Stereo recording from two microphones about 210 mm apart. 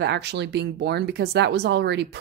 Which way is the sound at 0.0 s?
55° right (ahead or behind).